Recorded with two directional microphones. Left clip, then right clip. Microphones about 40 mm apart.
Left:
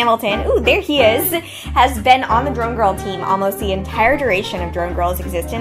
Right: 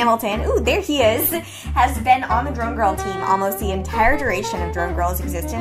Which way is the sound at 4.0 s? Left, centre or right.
Centre.